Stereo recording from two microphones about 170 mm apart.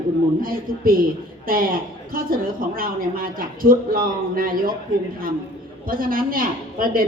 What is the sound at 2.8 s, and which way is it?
A woman's voice, 55° right (ahead or behind).